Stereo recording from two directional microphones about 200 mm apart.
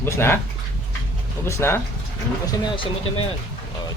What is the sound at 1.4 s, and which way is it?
Speech, 10° left (ahead or behind).